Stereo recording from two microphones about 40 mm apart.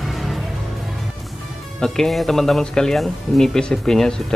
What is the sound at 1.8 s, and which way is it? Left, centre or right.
Speech, centre.